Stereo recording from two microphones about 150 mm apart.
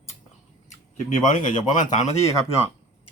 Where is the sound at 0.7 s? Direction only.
50° left (ahead or behind).